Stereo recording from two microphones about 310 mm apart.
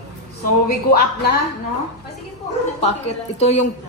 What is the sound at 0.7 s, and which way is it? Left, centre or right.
Speech, left.